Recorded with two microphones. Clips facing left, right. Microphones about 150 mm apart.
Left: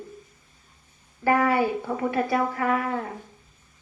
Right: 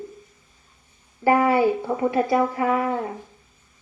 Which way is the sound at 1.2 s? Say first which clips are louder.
Right 4 dB; 20° right (ahead or behind).